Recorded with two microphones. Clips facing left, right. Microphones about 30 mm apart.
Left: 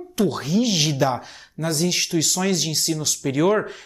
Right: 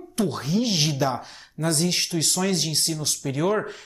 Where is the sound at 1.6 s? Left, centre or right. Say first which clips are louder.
Even; left.